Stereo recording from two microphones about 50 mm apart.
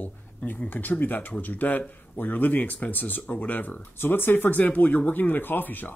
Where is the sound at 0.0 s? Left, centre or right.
Left.